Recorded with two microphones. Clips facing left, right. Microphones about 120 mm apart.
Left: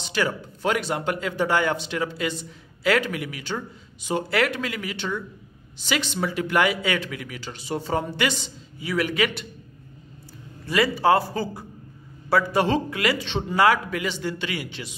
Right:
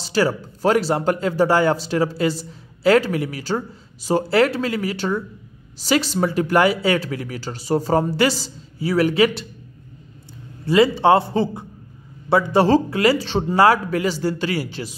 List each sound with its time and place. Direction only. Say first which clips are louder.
0.0 s speech: right 6 dB; 35° right (ahead or behind)
10.6 s a man's voice: right 6 dB; 25° right (ahead or behind)
12.6 s speech: right 7 dB; 35° right (ahead or behind)